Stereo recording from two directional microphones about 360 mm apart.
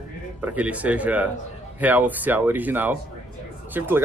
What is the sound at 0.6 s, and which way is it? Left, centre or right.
Speech, centre.